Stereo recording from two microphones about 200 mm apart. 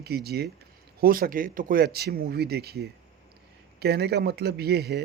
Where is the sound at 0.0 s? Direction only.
55° right (ahead or behind).